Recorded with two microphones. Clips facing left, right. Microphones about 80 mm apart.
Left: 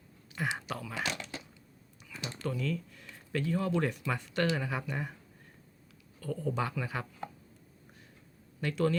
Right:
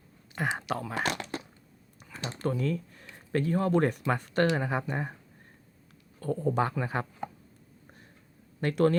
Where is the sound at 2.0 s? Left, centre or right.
Right.